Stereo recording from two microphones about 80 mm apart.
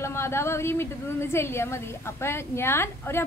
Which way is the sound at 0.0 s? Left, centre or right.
Left.